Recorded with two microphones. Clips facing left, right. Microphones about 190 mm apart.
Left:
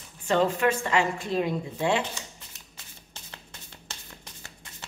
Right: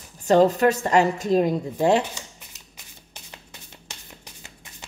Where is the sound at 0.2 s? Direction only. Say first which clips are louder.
Right 7 dB; 40° right (ahead or behind).